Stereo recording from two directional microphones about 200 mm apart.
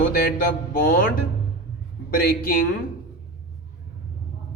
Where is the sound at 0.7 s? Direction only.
45° left (ahead or behind).